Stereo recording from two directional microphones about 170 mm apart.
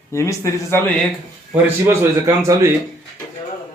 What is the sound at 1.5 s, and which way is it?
Speech, 10° right (ahead or behind).